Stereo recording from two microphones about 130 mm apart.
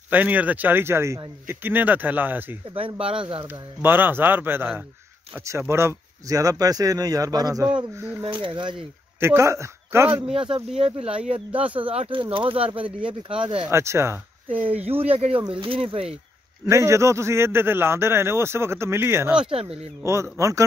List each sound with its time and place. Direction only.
0.1 s speech: 10° right (ahead or behind)
3.0 s speech: 45° right (ahead or behind)
3.8 s speech: 15° right (ahead or behind)
8.2 s speech: 40° right (ahead or behind)
9.2 s speech: 20° right (ahead or behind)
10.3 s speech: 40° right (ahead or behind)
11.5 s speech: 10° right (ahead or behind)
11.9 s speech: 50° right (ahead or behind)
12.8 s speech: 10° right (ahead or behind)
13.7 s speech: 20° right (ahead or behind)
14.9 s speech: 50° right (ahead or behind)
16.6 s speech: 20° right (ahead or behind)
19.5 s speech: 50° right (ahead or behind)
20.0 s speech: 20° right (ahead or behind)